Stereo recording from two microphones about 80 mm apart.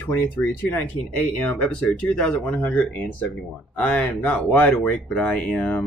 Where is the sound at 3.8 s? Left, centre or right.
Centre.